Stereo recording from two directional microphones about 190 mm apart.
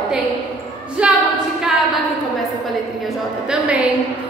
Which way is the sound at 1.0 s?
5° right (ahead or behind).